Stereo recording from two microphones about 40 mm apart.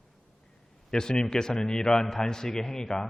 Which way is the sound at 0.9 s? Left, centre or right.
Centre.